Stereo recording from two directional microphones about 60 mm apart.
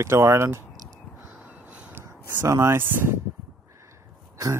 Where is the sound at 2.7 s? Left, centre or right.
Right.